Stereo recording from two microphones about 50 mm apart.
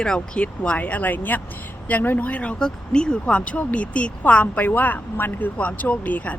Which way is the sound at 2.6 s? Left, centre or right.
Centre.